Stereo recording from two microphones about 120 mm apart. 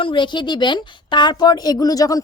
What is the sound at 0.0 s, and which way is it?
A woman's voice, 40° left (ahead or behind).